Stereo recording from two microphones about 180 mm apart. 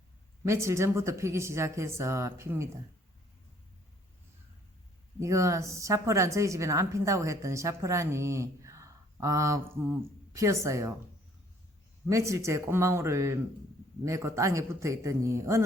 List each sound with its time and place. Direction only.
0.4 s a woman's voice: 15° right (ahead or behind)
5.2 s a woman's voice: 15° right (ahead or behind)
12.0 s a woman's voice: 15° right (ahead or behind)